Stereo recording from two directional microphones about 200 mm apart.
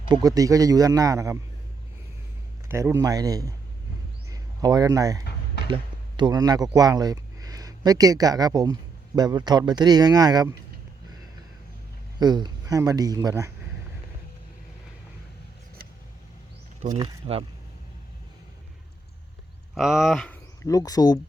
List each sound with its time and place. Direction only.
0.1 s a man's voice: 20° right (ahead or behind)
2.6 s a man's voice: 15° right (ahead or behind)
12.2 s a man's voice: 20° right (ahead or behind)
17.0 s a man's voice: 30° right (ahead or behind)
19.7 s speech: centre (ahead or behind); by 21.2 s 20° left (ahead or behind)